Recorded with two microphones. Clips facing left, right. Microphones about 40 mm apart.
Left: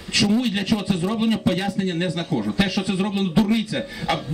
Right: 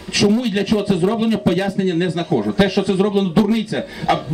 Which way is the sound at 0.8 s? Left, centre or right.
Right.